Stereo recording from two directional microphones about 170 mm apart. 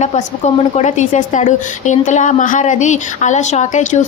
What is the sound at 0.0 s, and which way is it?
A woman's voice, 45° left (ahead or behind).